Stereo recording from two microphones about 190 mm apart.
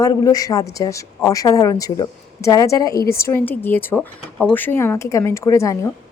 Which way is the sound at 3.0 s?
55° left (ahead or behind).